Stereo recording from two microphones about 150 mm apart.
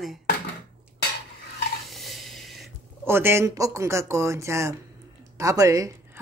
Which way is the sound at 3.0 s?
15° right (ahead or behind).